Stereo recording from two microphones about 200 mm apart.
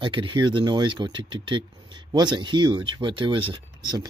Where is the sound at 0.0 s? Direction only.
25° right (ahead or behind).